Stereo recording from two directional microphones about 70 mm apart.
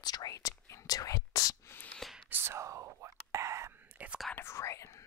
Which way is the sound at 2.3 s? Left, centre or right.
Right.